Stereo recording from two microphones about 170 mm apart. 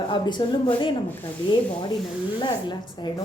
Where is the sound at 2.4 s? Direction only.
25° left (ahead or behind).